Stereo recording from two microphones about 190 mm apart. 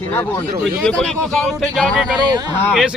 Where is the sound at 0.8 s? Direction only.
5° left (ahead or behind).